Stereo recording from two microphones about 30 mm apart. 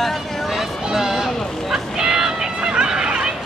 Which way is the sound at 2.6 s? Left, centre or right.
Right.